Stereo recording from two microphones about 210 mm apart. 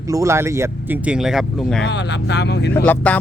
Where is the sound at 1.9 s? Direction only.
55° left (ahead or behind).